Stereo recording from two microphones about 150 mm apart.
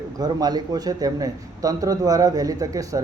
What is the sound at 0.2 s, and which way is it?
A man's voice, 25° right (ahead or behind).